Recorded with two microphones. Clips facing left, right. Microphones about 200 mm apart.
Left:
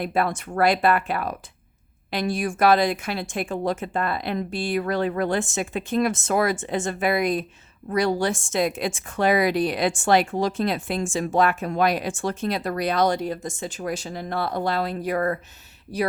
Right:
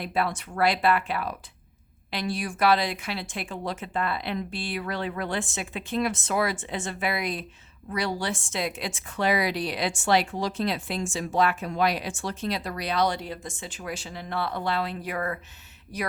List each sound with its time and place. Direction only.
0.0 s a woman's voice: 50° left (ahead or behind); by 16.1 s 30° left (ahead or behind)